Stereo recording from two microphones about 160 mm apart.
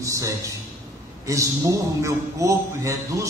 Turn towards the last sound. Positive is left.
turn(degrees=-20)  # may be behind; listen again after turning